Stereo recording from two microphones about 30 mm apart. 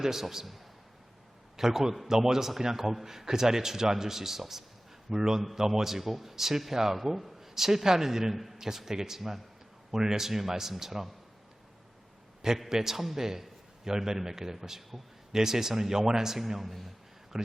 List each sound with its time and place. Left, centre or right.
0.0 s a man's voice: centre
12.6 s a man's voice: centre
17.3 s speech: centre